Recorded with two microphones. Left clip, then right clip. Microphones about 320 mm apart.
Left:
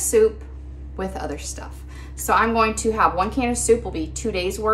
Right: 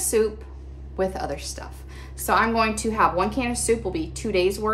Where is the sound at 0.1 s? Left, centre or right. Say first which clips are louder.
Left 5 dB; centre.